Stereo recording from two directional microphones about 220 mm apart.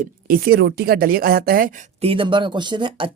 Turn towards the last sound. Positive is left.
turn(degrees=-25)  # may be behind; listen again after turning